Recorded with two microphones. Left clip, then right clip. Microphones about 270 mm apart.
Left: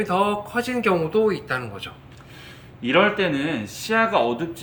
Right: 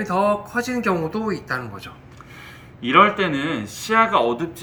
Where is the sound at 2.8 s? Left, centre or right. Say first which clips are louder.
Right 3 dB; centre.